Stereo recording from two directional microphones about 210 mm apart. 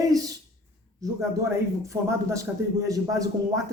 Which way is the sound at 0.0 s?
15° right (ahead or behind).